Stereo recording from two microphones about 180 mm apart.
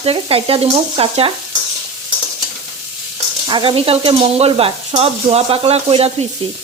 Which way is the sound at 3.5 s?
30° right (ahead or behind).